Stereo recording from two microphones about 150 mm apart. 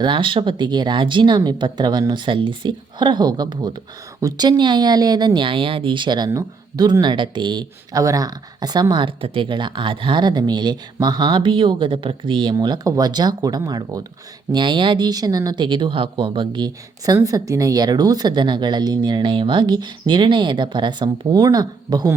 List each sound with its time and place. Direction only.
0.0 s speech: 35° right (ahead or behind)